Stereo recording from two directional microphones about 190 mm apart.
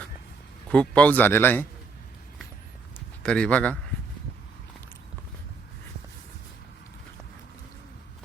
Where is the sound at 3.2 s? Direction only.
5° left (ahead or behind).